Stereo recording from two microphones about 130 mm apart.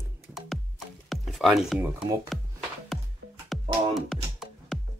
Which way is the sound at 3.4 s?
Centre (ahead or behind).